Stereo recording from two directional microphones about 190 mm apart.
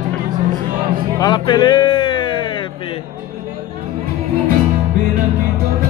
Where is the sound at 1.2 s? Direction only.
20° left (ahead or behind).